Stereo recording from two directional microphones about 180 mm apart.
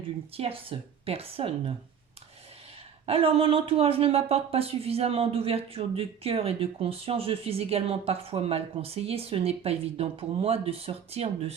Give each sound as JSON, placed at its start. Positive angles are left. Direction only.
{"t": 0.3, "sound": "speech", "side_deg": -30}
{"t": 3.1, "sound": "speech", "side_deg": -30}